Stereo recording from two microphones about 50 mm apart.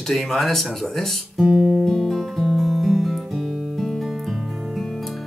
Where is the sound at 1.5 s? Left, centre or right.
Centre.